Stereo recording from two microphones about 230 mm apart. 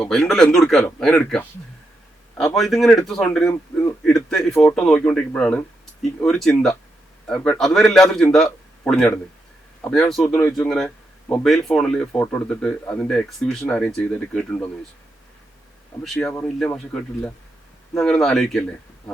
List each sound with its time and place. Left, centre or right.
0.0 s a man's voice: centre
16.0 s speech: centre